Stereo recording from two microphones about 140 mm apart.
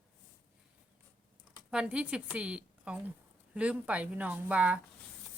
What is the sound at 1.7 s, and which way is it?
A woman's voice, 5° right (ahead or behind).